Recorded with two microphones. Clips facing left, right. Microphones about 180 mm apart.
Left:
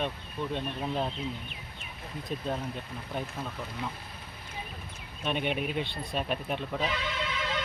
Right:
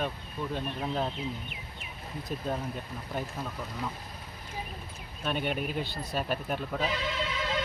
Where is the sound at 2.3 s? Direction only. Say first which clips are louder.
Even; 5° right (ahead or behind).